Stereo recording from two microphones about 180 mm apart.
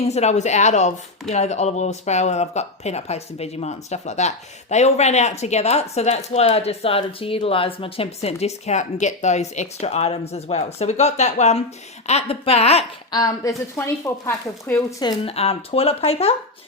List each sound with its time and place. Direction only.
0.0 s speech: 35° left (ahead or behind)
13.1 s speech: 20° left (ahead or behind)
15.2 s speech: 35° left (ahead or behind)